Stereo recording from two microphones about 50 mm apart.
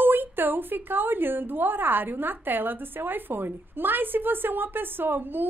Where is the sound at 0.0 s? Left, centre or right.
Right.